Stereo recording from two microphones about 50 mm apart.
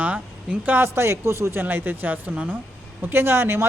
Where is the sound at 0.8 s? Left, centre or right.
Right.